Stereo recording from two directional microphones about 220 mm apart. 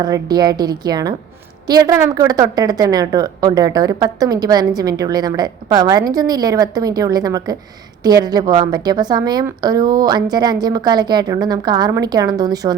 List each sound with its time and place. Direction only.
0.0 s a woman's voice: 20° right (ahead or behind)